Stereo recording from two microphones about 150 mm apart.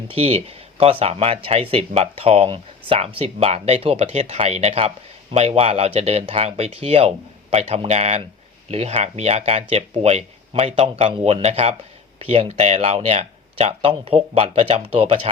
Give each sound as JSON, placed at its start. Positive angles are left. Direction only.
{"t": 0.1, "sound": "speech", "side_deg": -40}